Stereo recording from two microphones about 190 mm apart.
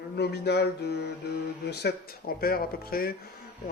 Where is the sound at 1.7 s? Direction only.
60° left (ahead or behind).